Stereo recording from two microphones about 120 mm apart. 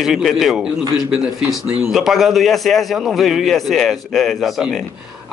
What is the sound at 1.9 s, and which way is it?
A man's voice, centre (ahead or behind).